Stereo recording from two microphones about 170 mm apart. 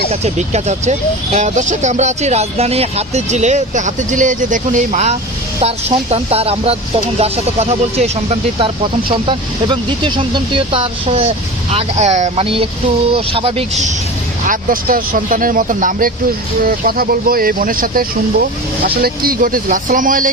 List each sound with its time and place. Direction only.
0.1 s speech: 40° right (ahead or behind)
14.4 s speech: 55° right (ahead or behind)
19.0 s speech: 60° right (ahead or behind)